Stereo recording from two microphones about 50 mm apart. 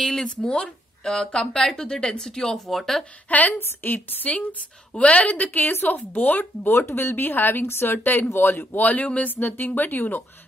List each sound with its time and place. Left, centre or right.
0.0 s speech: centre
3.3 s a woman's voice: left
6.9 s speech: left
7.2 s a woman's voice: left
7.6 s a woman's voice: left